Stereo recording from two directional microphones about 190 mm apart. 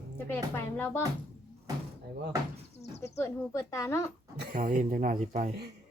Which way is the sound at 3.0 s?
15° left (ahead or behind).